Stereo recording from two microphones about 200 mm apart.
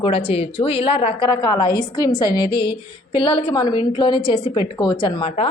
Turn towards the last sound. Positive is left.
turn(degrees=30)  # may be behind; listen again after turning